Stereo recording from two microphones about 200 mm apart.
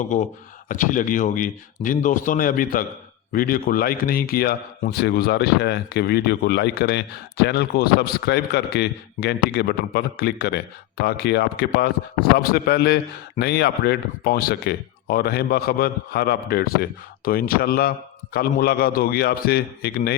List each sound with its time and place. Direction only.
0.0 s a man's voice: 40° left (ahead or behind)